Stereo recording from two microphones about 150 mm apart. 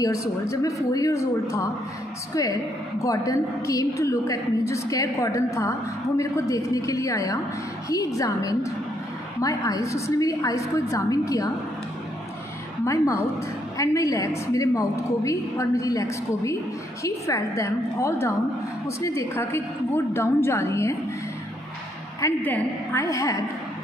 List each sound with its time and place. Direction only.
0.0 s a woman's voice: 20° left (ahead or behind)
3.0 s a woman's voice: 20° left (ahead or behind)
12.8 s a woman's voice: 20° left (ahead or behind)
22.2 s a woman's voice: 15° left (ahead or behind)